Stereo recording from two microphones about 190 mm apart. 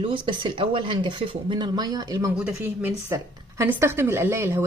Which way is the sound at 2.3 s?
5° right (ahead or behind).